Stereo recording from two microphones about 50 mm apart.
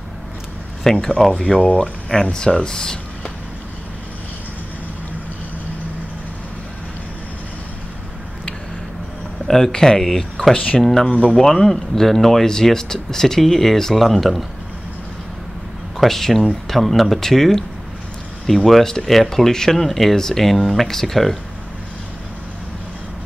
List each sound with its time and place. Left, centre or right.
0.9 s speech: centre
9.5 s speech: centre
10.5 s speech: left
10.8 s speech: centre
16.0 s speech: centre